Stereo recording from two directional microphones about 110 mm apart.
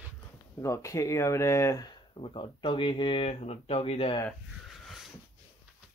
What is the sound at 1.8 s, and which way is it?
Speech, 50° left (ahead or behind).